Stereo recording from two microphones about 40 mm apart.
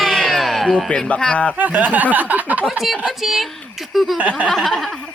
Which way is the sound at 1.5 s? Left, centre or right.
Right.